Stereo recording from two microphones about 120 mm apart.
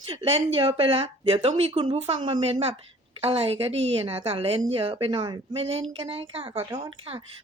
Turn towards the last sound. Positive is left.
turn(degrees=-50)  # may be behind; listen again after turning